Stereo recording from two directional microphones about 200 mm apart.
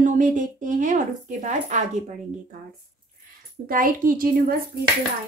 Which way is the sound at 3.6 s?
45° right (ahead or behind).